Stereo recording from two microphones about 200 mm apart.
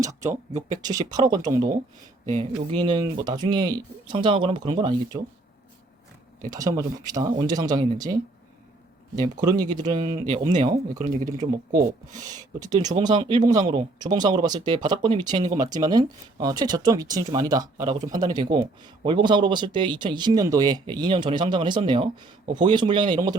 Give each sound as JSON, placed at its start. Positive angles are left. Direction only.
{"t": 0.3, "sound": "speech", "side_deg": -40}
{"t": 0.8, "sound": "speech", "side_deg": -20}
{"t": 2.2, "sound": "speech", "side_deg": -35}
{"t": 2.6, "sound": "speech", "side_deg": -20}
{"t": 6.5, "sound": "speech", "side_deg": -15}
{"t": 10.0, "sound": "speech", "side_deg": -35}
{"t": 12.5, "sound": "speech", "side_deg": -20}